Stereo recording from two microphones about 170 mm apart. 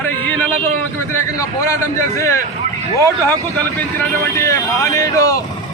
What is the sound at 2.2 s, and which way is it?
Speech, 15° left (ahead or behind).